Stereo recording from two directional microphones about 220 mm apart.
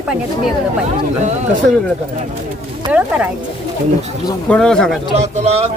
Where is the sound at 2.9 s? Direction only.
5° right (ahead or behind).